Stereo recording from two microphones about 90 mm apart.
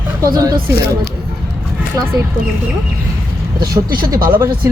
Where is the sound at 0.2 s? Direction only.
45° right (ahead or behind).